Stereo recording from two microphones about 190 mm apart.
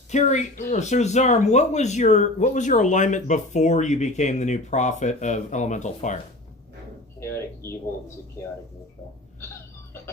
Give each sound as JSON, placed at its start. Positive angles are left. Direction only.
{"t": 0.1, "sound": "speech", "side_deg": 40}
{"t": 7.2, "sound": "speech", "side_deg": 15}